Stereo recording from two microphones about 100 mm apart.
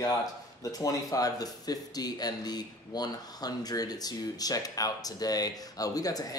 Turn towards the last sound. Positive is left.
turn(degrees=40)  # may be behind; listen again after turning